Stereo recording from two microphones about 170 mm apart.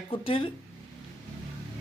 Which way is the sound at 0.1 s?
30° left (ahead or behind).